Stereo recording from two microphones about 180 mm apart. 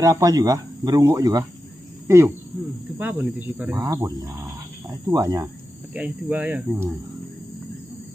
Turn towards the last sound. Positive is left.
turn(degrees=-10)  # may be behind; listen again after turning